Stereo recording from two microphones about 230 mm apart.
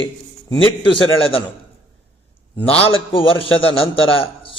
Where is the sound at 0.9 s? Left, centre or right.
Left.